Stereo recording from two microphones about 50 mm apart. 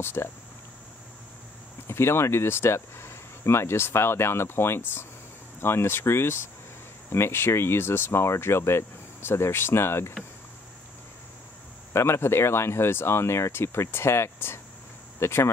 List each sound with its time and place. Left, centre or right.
0.0 s speech: left
1.9 s speech: left
11.9 s speech: left